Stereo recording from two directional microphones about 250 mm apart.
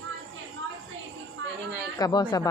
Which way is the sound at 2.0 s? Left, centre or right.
Centre.